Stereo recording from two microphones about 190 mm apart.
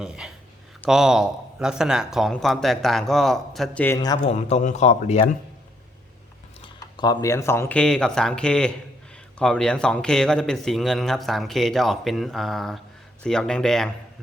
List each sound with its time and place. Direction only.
0.0 s a man's voice: 5° right (ahead or behind)
3.9 s speech: 20° left (ahead or behind)
4.3 s a man's voice: 35° left (ahead or behind)
6.7 s a man's voice: 20° left (ahead or behind); by 13.9 s 5° left (ahead or behind)